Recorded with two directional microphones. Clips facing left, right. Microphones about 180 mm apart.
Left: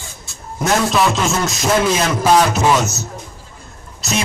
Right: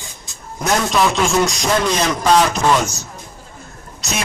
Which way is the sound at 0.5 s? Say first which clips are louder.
Left 1 dB; centre (ahead or behind).